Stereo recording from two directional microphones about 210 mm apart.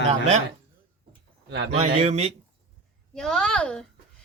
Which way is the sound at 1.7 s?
30° right (ahead or behind).